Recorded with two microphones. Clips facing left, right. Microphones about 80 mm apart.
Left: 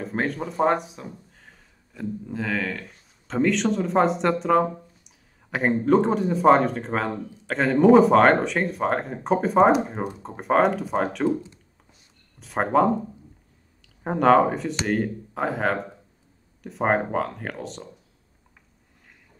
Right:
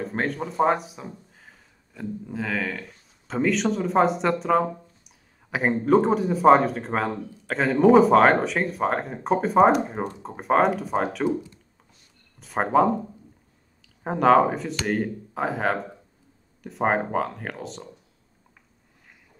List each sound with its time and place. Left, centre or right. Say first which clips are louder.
0.0 s speech: even; centre
12.4 s speech: even; centre
14.0 s speech: even; centre